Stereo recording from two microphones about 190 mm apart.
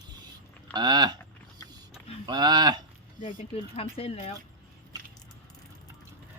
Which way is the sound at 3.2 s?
30° left (ahead or behind).